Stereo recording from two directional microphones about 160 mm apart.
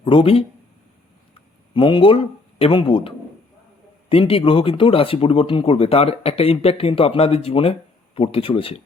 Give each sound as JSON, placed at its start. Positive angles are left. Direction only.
{"t": 0.0, "sound": "speech", "side_deg": 35}
{"t": 1.7, "sound": "speech", "side_deg": 30}
{"t": 4.1, "sound": "speech", "side_deg": 35}